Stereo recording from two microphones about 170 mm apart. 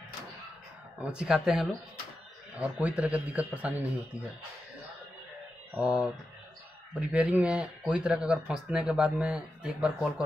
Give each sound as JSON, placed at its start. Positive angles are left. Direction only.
{"t": 1.1, "sound": "a man's voice", "side_deg": -5}
{"t": 5.8, "sound": "speech", "side_deg": -5}